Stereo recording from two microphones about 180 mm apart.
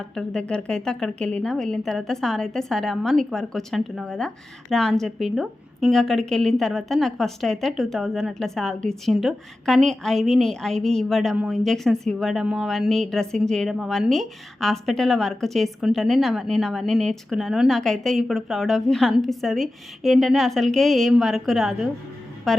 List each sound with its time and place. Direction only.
0.0 s a woman's voice: 5° left (ahead or behind)